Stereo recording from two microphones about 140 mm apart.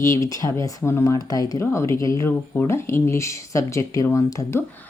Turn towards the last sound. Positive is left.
turn(degrees=15)  # may be behind; listen again after turning